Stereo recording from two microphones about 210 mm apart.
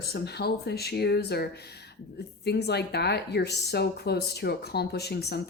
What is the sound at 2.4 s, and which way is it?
Speech, 50° left (ahead or behind).